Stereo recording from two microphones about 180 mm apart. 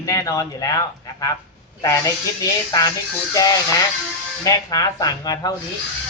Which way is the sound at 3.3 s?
20° left (ahead or behind).